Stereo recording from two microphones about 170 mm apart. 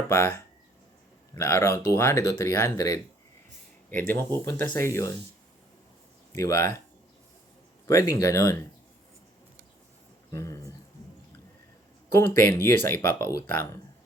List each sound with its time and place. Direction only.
0.1 s speech: 15° left (ahead or behind)
6.3 s speech: 15° left (ahead or behind)
7.9 s speech: 20° left (ahead or behind)
10.3 s speech: 20° left (ahead or behind)
12.1 s speech: 15° left (ahead or behind)